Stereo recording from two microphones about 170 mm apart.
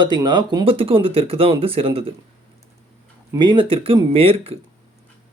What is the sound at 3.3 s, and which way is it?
Speech, 30° right (ahead or behind).